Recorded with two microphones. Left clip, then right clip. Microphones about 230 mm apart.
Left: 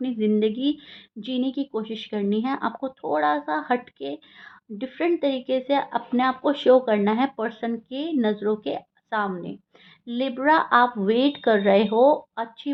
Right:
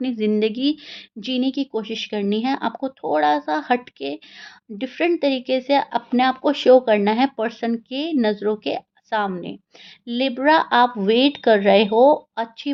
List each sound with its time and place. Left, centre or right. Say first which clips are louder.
0.0 s speech: right 2 dB; right
4.8 s speech: right 3 dB; right